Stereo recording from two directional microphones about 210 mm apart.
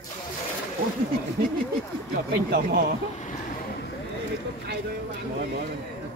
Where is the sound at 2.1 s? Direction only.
45° right (ahead or behind).